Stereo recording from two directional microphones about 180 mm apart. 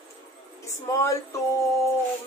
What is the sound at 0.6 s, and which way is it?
Speech, 15° left (ahead or behind).